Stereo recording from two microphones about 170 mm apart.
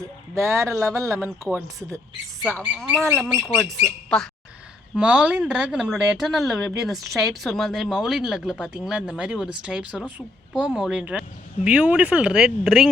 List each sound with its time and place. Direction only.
0.3 s speech: 15° right (ahead or behind)
2.6 s speech: 5° right (ahead or behind)
4.9 s speech: 5° right (ahead or behind)